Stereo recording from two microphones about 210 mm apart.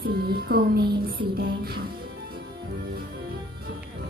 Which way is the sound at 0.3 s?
45° right (ahead or behind).